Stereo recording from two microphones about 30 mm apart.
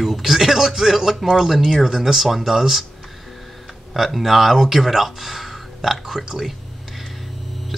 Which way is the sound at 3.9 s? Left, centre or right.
Centre.